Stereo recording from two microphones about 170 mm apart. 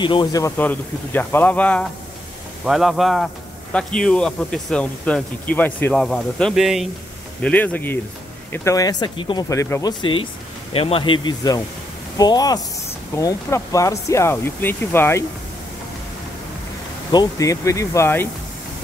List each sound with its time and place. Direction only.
0.0 s speech: 25° left (ahead or behind); by 6.9 s centre (ahead or behind)
7.4 s speech: 10° left (ahead or behind)
10.7 s speech: 35° left (ahead or behind); by 15.2 s 15° left (ahead or behind)
17.1 s speech: 20° left (ahead or behind)